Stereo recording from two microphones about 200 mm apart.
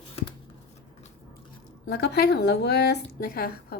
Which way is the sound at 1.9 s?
55° left (ahead or behind).